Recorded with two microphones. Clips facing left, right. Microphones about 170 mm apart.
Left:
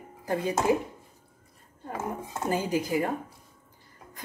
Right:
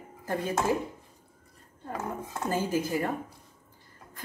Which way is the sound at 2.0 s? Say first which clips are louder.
Left 1 dB; 20° left (ahead or behind).